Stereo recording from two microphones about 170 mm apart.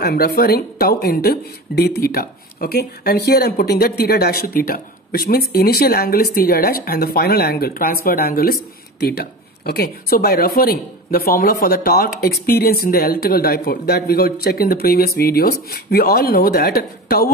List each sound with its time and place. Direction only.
0.0 s speech: 65° left (ahead or behind)